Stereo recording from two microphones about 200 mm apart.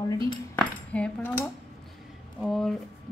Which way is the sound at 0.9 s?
5° left (ahead or behind).